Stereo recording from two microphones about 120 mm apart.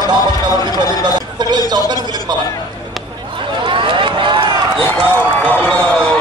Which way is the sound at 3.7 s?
45° right (ahead or behind).